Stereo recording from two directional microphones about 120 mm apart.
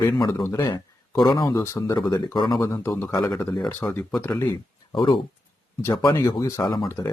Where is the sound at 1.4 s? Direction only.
25° left (ahead or behind).